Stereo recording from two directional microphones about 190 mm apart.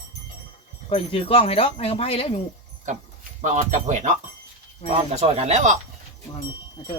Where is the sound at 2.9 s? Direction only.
40° right (ahead or behind).